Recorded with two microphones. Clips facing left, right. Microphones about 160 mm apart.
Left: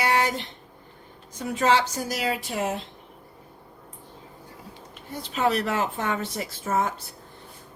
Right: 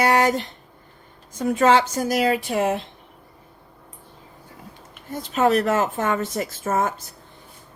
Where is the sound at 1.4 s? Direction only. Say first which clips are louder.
Right 5 dB; 50° right (ahead or behind).